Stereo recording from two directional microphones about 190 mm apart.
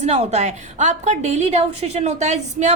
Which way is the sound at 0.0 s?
35° right (ahead or behind).